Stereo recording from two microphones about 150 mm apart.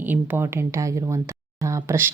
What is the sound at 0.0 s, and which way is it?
Speech, 10° right (ahead or behind).